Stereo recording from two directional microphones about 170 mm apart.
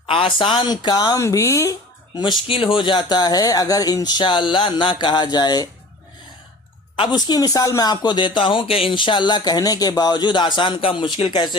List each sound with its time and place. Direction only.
0.1 s speech: 30° left (ahead or behind)
6.9 s speech: 25° left (ahead or behind)